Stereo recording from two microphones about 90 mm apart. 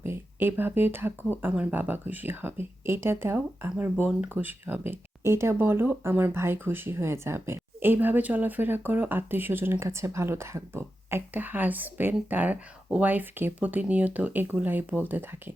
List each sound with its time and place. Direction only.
0.0 s speech: 25° right (ahead or behind)